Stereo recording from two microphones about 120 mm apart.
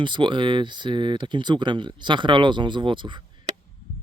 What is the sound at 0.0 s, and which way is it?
Speech, 40° right (ahead or behind).